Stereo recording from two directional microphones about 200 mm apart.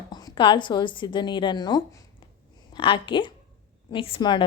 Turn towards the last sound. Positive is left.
turn(degrees=25)  # may be behind; listen again after turning